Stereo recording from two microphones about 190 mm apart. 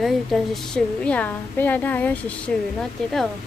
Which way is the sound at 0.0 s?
Centre (ahead or behind).